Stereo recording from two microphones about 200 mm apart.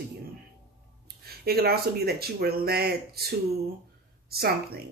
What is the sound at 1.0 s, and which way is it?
Speech, 50° right (ahead or behind).